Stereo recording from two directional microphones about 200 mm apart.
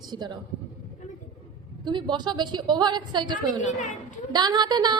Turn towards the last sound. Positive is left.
turn(degrees=-20)  # may be behind; listen again after turning